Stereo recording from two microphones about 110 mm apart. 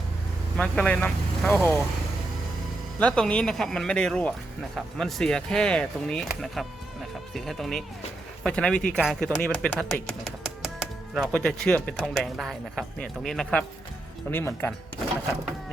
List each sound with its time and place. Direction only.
0.5 s speech: 10° left (ahead or behind)
3.0 s speech: 10° left (ahead or behind)
14.3 s speech: 20° left (ahead or behind)